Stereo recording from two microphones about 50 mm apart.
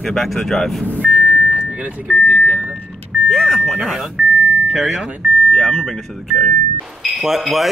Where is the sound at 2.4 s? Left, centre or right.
Right.